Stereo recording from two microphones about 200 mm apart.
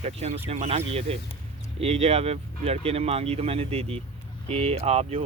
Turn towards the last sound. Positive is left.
turn(degrees=-30)  # may be behind; listen again after turning